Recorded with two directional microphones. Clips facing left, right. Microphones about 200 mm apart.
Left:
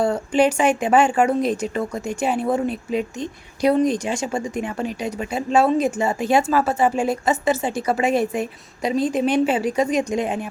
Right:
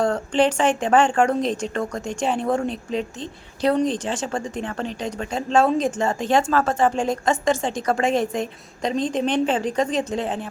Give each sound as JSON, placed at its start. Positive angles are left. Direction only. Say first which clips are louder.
{"t": 0.0, "sound": "a woman's voice", "louder": "left 1 dB", "side_deg": 10}